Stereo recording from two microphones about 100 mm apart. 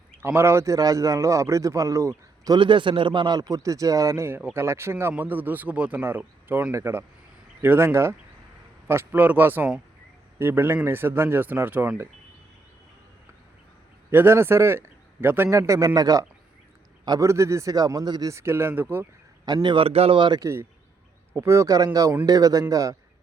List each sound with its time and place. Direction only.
0.2 s a man's voice: 25° right (ahead or behind)
2.6 s a man's voice: 55° right (ahead or behind); by 4.3 s 35° right (ahead or behind)
4.3 s a man's voice: 20° right (ahead or behind)
14.1 s a man's voice: 25° right (ahead or behind); by 18.3 s 40° right (ahead or behind)
18.3 s a man's voice: 25° right (ahead or behind)
19.6 s speech: 65° right (ahead or behind); by 20.1 s 80° right
20.1 s a man's voice: 50° right (ahead or behind)
20.4 s a man's voice: 25° right (ahead or behind)